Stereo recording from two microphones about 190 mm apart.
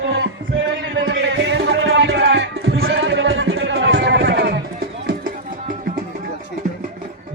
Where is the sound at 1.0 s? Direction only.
65° right (ahead or behind).